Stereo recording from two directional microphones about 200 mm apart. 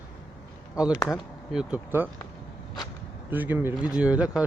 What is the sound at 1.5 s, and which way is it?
Speech, 10° right (ahead or behind).